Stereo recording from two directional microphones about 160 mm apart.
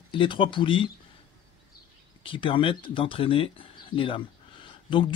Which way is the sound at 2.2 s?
35° left (ahead or behind).